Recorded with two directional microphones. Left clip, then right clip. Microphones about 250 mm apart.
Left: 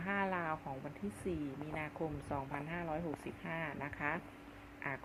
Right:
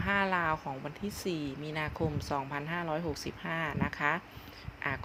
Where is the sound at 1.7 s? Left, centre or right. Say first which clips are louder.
Right 7 dB; right.